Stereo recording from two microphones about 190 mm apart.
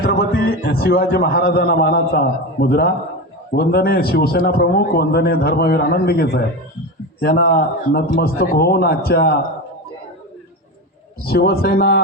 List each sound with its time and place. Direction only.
0.0 s a man's voice: 55° left (ahead or behind)
11.3 s a man's voice: 55° left (ahead or behind)